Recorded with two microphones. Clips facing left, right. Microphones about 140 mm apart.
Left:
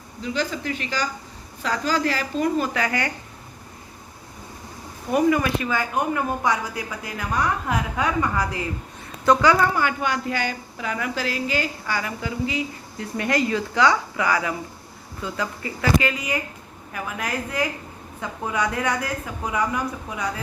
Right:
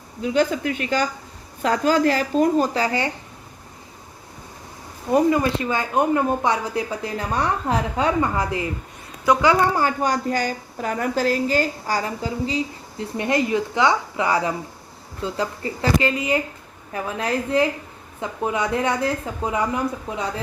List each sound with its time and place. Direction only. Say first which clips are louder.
0.2 s a woman's voice: right 6 dB; 50° right (ahead or behind); by 3.1 s 30° right (ahead or behind)
5.1 s speech: right 2 dB; 25° right (ahead or behind)
9.7 s a woman's voice: right 3 dB; 40° right (ahead or behind)